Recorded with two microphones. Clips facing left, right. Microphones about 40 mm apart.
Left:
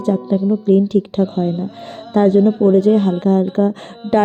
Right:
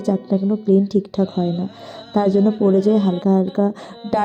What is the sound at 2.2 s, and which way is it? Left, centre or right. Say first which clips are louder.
A woman's voice: left 4 dB; left.